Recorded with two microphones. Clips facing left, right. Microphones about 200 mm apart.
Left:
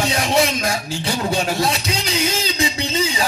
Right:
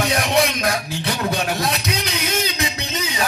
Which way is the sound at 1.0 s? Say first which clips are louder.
Left 2 dB; 30° left (ahead or behind).